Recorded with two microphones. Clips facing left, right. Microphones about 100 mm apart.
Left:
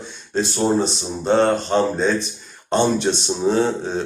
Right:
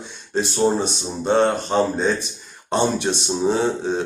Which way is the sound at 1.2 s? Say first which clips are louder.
Left 1 dB; 5° right (ahead or behind).